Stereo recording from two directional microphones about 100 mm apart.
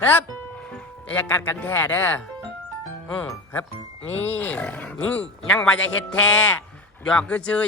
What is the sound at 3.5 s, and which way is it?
Speech, 15° left (ahead or behind).